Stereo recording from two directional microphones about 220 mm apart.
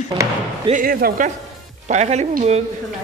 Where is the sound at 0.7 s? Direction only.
40° right (ahead or behind).